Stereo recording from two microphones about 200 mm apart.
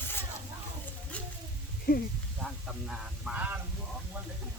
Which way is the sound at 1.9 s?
45° left (ahead or behind).